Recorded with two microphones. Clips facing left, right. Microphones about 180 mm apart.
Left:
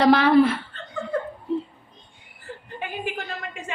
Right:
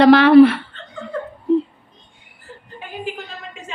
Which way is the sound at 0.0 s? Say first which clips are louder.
Right 7 dB; 70° right (ahead or behind).